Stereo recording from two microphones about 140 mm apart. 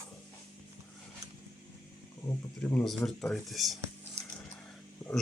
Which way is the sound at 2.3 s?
15° left (ahead or behind).